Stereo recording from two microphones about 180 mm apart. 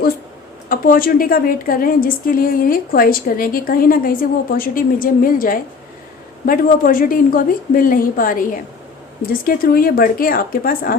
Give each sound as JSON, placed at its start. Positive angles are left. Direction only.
{"t": 0.7, "sound": "a woman's voice", "side_deg": 55}